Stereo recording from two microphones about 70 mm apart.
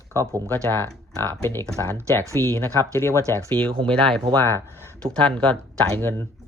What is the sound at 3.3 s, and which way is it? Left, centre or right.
Speech, left.